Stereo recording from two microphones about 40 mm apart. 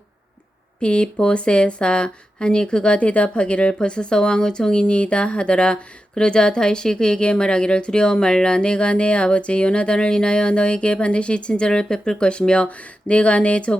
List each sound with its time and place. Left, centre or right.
0.8 s speech: left